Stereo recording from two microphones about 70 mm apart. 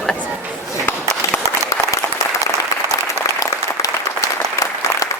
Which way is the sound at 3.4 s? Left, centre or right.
Left.